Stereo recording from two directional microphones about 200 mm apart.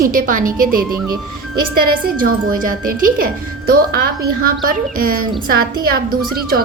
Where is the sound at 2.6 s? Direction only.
45° right (ahead or behind).